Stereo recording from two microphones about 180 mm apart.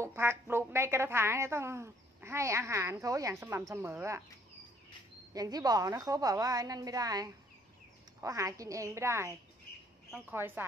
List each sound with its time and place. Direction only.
0.0 s a woman's voice: 15° right (ahead or behind)
5.3 s a woman's voice: 20° right (ahead or behind)
10.3 s a woman's voice: 10° right (ahead or behind)